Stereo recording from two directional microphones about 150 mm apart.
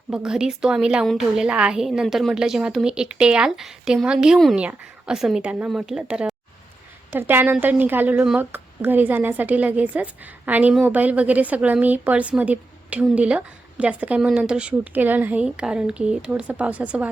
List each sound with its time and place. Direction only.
0.1 s a woman's voice: 5° right (ahead or behind)